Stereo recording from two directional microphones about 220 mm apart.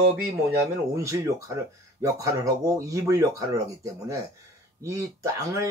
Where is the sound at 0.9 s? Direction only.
15° right (ahead or behind).